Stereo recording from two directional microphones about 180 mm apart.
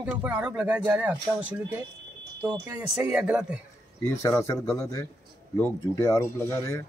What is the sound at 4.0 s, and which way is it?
Speech, 15° left (ahead or behind).